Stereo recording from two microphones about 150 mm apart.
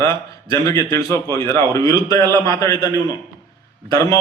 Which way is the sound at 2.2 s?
25° right (ahead or behind).